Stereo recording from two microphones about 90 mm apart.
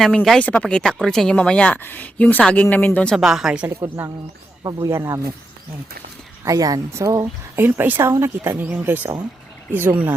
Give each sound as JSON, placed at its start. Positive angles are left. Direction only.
{"t": 0.3, "sound": "speech", "side_deg": 15}
{"t": 3.2, "sound": "speech", "side_deg": -5}
{"t": 3.7, "sound": "speech", "side_deg": -25}
{"t": 6.4, "sound": "speech", "side_deg": -40}
{"t": 7.5, "sound": "speech", "side_deg": -25}